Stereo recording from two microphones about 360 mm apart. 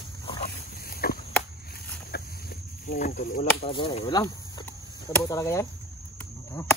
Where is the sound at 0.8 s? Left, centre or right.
Left.